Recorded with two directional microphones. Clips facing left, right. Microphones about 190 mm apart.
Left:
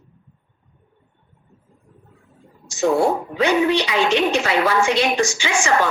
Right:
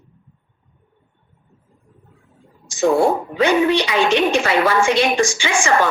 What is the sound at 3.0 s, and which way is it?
A woman's voice, 50° right (ahead or behind).